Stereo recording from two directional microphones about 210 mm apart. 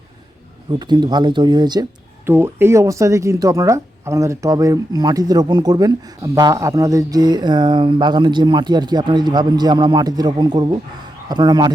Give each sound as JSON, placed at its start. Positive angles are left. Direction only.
{"t": 0.8, "sound": "speech", "side_deg": -20}